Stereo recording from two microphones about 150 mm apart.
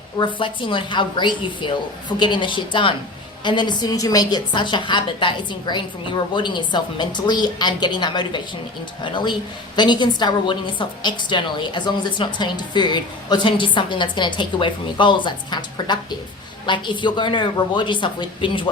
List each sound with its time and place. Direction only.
0.3 s a woman's voice: 35° left (ahead or behind)